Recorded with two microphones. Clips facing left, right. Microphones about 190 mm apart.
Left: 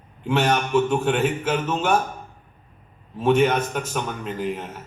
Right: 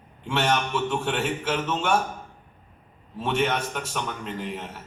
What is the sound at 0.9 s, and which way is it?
A man's voice, 10° left (ahead or behind).